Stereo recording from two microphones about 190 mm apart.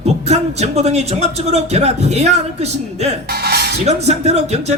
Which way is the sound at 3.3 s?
55° right (ahead or behind).